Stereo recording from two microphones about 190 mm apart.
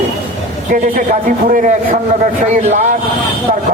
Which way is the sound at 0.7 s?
45° right (ahead or behind).